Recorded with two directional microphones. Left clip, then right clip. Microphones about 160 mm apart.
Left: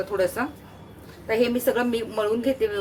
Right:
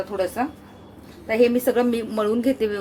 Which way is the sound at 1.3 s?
30° right (ahead or behind).